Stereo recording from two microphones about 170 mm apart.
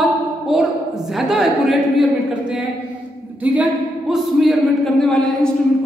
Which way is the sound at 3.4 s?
5° right (ahead or behind).